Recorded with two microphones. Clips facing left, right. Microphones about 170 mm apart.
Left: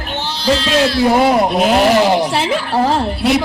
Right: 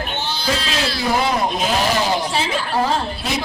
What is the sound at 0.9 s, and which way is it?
Speech, 55° left (ahead or behind).